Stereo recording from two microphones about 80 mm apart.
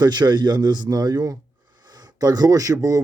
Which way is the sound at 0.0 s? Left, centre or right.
Right.